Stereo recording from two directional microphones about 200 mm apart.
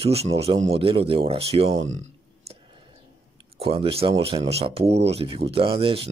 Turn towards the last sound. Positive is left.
turn(degrees=-30)  # may be behind; listen again after turning